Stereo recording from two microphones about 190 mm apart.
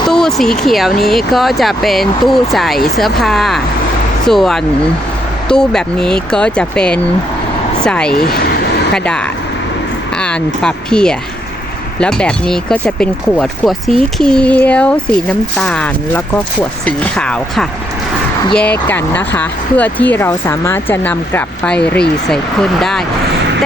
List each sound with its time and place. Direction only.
0.1 s speech: centre (ahead or behind)
8.2 s a sound: 55° left (ahead or behind)
10.2 s speech: 5° left (ahead or behind)